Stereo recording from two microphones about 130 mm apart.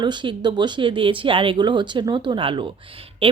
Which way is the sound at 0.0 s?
35° right (ahead or behind).